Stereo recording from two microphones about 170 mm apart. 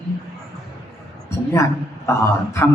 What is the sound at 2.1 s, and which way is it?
Speech, 15° left (ahead or behind).